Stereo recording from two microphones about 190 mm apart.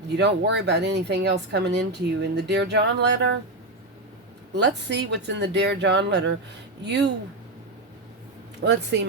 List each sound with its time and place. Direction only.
0.2 s speech: 65° right (ahead or behind)
4.5 s speech: 65° right (ahead or behind)
8.6 s speech: 65° right (ahead or behind)